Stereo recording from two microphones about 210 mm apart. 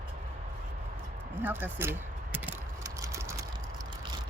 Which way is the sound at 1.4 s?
10° right (ahead or behind).